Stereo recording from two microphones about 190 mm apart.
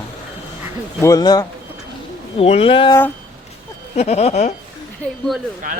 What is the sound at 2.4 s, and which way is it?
Speech, 30° left (ahead or behind).